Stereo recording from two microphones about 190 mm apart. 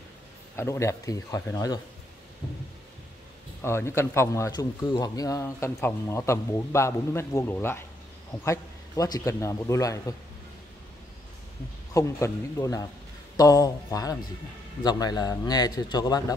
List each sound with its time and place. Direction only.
0.6 s speech: 15° left (ahead or behind)
3.6 s speech: 15° left (ahead or behind)
11.9 s a man's voice: 15° left (ahead or behind)